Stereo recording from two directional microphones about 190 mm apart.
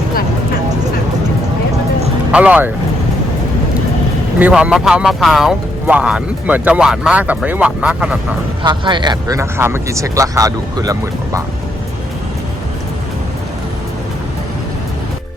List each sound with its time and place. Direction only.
2.3 s speech: 5° right (ahead or behind)
4.4 s speech: 5° right (ahead or behind)
8.6 s speech: 25° right (ahead or behind)